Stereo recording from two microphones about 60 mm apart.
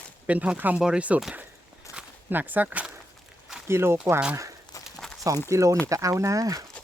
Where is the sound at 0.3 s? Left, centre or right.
Right.